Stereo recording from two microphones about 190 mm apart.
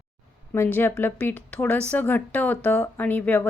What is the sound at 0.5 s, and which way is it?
Speech, 10° left (ahead or behind).